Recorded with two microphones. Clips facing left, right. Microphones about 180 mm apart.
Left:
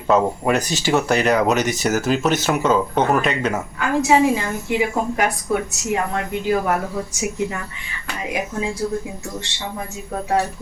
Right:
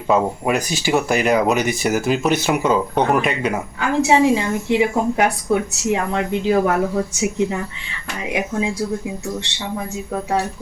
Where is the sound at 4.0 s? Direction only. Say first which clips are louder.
Right 1 dB; 30° right (ahead or behind).